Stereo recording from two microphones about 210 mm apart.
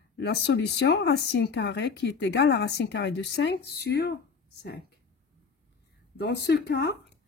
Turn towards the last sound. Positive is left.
turn(degrees=50)  # may be behind; listen again after turning